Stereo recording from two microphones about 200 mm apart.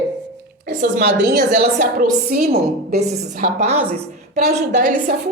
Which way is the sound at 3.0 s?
35° right (ahead or behind).